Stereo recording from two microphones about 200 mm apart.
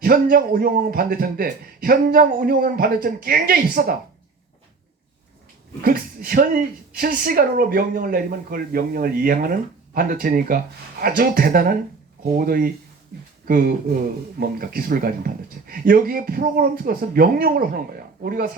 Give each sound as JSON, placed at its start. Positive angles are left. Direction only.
{"t": 0.0, "sound": "speech", "side_deg": -45}
{"t": 5.8, "sound": "speech", "side_deg": -45}